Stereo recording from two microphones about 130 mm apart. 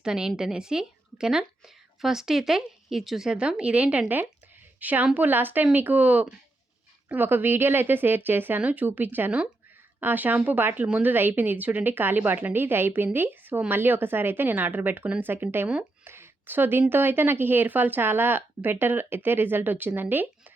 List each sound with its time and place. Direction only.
0.0 s a woman's voice: 5° right (ahead or behind)